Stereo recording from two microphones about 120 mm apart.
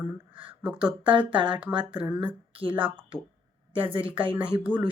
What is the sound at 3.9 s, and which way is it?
Speech, 45° right (ahead or behind).